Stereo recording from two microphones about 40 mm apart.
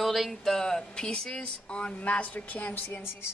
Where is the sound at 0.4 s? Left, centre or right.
Centre.